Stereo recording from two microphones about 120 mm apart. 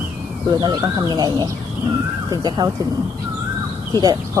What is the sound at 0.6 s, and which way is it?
Speech, 35° right (ahead or behind).